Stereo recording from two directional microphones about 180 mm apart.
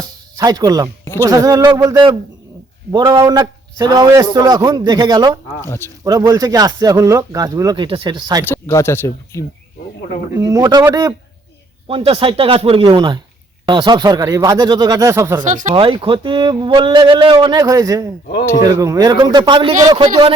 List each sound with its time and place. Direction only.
0.3 s a man's voice: 20° right (ahead or behind)
5.6 s speech: 15° left (ahead or behind)
6.1 s a man's voice: 20° right (ahead or behind)
8.4 s speech: 15° left (ahead or behind)
10.3 s a man's voice: 20° right (ahead or behind)
11.9 s a man's voice: 30° right (ahead or behind)
15.4 s speech: 45° right (ahead or behind)
15.7 s a man's voice: 30° right (ahead or behind)